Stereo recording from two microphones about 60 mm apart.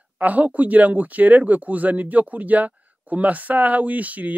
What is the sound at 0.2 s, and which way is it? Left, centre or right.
Speech, right.